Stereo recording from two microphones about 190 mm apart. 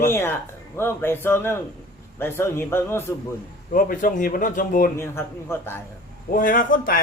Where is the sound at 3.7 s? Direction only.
45° left (ahead or behind).